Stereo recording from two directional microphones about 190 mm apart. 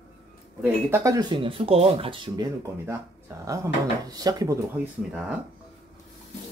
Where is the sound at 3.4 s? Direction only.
15° right (ahead or behind).